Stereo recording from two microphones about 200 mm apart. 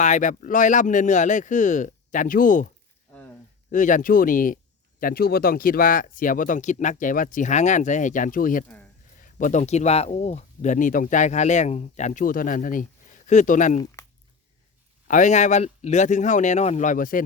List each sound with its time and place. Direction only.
0.0 s speech: 40° left (ahead or behind)
3.1 s a sound: 5° left (ahead or behind)
3.7 s speech: 40° left (ahead or behind)
15.0 s speech: 40° left (ahead or behind)